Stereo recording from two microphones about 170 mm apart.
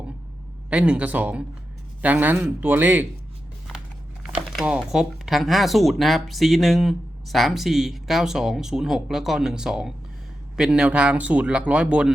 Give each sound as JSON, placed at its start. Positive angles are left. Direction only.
{"t": 0.7, "sound": "speech", "side_deg": -5}
{"t": 4.4, "sound": "speech", "side_deg": -5}